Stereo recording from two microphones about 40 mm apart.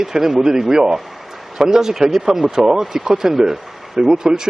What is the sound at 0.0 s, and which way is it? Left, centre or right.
Speech, centre.